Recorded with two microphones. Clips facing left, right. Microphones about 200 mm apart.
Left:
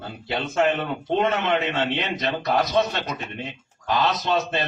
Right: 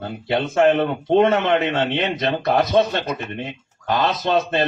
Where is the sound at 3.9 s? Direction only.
50° right (ahead or behind).